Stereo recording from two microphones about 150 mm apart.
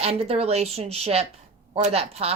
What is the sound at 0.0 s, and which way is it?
A woman's voice, 40° right (ahead or behind).